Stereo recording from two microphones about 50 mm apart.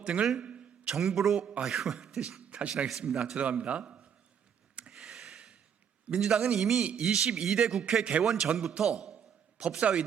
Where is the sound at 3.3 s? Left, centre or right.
Right.